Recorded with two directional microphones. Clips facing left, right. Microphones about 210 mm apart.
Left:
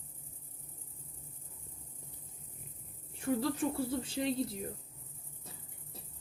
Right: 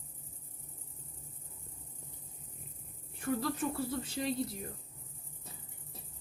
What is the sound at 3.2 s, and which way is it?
Speech, 30° left (ahead or behind).